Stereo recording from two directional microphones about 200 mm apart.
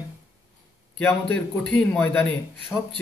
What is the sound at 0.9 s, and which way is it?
A man's voice, 5° left (ahead or behind).